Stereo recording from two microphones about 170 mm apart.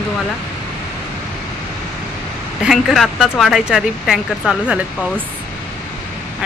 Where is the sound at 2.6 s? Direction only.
Centre (ahead or behind).